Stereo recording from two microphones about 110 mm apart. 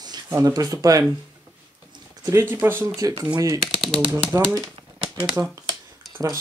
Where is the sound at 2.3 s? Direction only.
25° right (ahead or behind).